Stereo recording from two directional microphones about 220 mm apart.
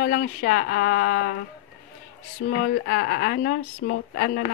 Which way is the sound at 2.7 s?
50° left (ahead or behind).